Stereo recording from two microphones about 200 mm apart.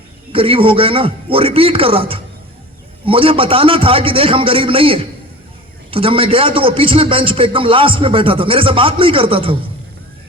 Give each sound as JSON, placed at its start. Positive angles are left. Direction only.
{"t": 0.3, "sound": "a man's voice", "side_deg": -25}